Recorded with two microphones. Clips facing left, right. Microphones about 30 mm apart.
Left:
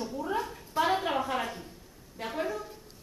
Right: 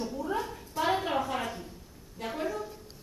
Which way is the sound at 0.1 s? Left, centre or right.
Centre.